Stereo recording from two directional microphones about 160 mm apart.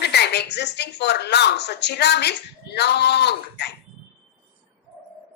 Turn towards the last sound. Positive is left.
turn(degrees=90)